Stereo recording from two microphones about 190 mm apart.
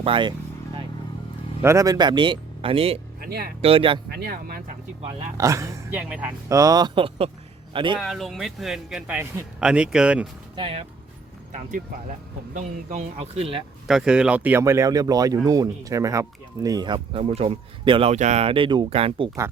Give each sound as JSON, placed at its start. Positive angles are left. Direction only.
{"t": 0.0, "sound": "speech", "side_deg": -25}
{"t": 1.6, "sound": "speech", "side_deg": -15}
{"t": 3.2, "sound": "speech", "side_deg": -55}
{"t": 3.6, "sound": "speech", "side_deg": -30}
{"t": 4.1, "sound": "speech", "side_deg": -55}
{"t": 5.4, "sound": "speech", "side_deg": -15}
{"t": 7.9, "sound": "a man's voice", "side_deg": 0}
{"t": 10.5, "sound": "speech", "side_deg": -30}
{"t": 12.5, "sound": "speech", "side_deg": -40}
{"t": 13.8, "sound": "speech", "side_deg": -5}